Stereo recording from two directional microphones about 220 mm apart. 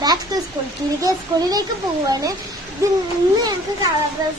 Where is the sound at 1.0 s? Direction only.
15° right (ahead or behind).